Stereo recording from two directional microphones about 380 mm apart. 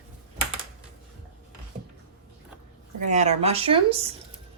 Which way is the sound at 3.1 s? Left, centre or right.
Centre.